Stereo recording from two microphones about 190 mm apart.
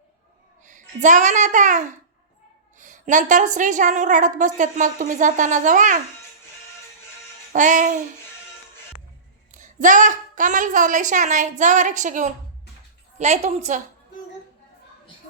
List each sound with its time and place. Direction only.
0.6 s a child's voice: 40° right (ahead or behind)
7.5 s a woman's voice: 40° right (ahead or behind)
9.6 s a woman's voice: 40° right (ahead or behind)